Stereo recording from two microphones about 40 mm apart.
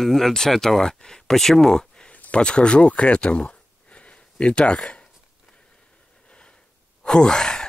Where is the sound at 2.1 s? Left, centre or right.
Left.